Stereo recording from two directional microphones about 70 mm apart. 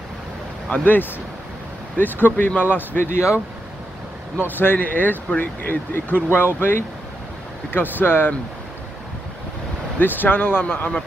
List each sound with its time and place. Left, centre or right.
0.7 s speech: left
2.0 s speech: left
4.4 s speech: left
9.9 s speech: left